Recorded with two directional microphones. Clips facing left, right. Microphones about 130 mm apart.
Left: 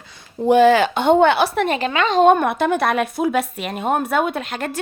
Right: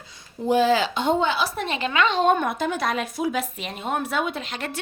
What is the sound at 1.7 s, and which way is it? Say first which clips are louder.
Speech: left 4 dB; 35° left (ahead or behind).